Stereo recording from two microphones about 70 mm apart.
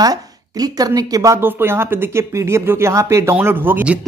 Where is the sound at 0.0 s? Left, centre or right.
Right.